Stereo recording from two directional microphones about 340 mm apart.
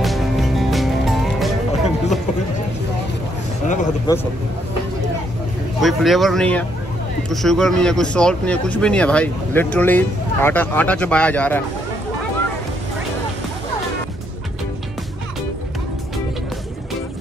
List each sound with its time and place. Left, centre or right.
0.0 s music: centre
3.6 s a sound: left
5.8 s speech: centre